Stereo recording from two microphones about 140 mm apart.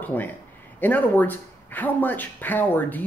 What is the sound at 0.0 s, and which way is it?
A man's voice, 15° left (ahead or behind).